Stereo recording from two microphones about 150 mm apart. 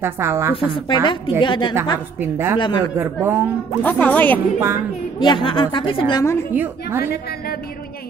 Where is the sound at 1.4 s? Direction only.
30° left (ahead or behind).